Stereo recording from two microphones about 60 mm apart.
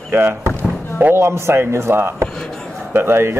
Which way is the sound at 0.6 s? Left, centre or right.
Right.